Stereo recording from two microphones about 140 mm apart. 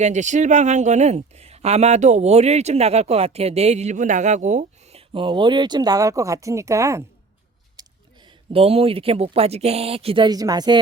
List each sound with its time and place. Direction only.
0.0 s speech: 60° right (ahead or behind); by 7.0 s 20° right (ahead or behind)
7.8 s speech: 35° right (ahead or behind)
10.2 s speech: 25° right (ahead or behind)